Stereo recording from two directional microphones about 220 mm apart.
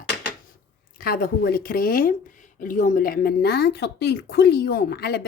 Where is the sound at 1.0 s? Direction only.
40° left (ahead or behind).